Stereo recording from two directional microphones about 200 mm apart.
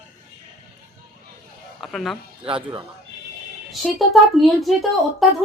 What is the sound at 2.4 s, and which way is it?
Speech, 25° right (ahead or behind).